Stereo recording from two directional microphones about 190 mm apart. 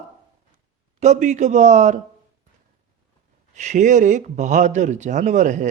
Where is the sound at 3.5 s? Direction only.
40° right (ahead or behind).